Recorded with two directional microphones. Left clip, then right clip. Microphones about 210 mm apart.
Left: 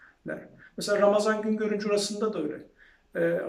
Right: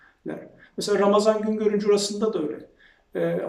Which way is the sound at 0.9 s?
5° right (ahead or behind).